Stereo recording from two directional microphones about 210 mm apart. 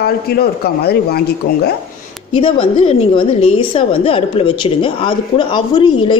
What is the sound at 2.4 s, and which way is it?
A woman's voice, 25° left (ahead or behind).